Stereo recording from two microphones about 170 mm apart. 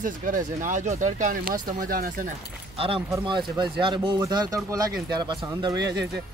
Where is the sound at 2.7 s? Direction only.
30° right (ahead or behind).